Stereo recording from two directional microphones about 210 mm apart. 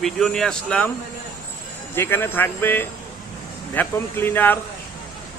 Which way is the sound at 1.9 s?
10° left (ahead or behind).